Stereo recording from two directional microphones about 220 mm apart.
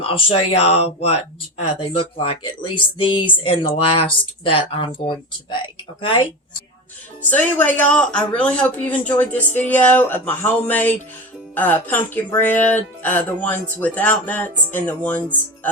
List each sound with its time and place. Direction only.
0.0 s speech: 25° left (ahead or behind)
7.3 s a man's voice: 5° left (ahead or behind)